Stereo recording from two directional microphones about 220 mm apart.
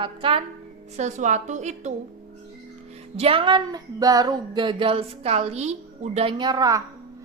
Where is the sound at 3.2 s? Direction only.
25° right (ahead or behind).